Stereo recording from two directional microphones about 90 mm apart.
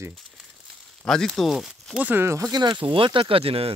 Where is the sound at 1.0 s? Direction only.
5° left (ahead or behind).